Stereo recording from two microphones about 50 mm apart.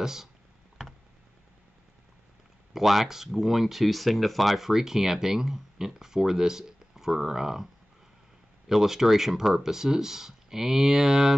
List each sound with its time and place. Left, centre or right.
0.0 s speech: centre
2.7 s speech: centre
8.6 s speech: centre